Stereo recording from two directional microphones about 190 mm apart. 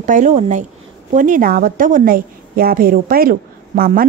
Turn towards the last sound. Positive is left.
turn(degrees=-45)  # may be behind; listen again after turning